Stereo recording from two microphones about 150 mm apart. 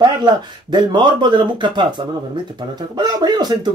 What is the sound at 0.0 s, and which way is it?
Speech, 30° right (ahead or behind).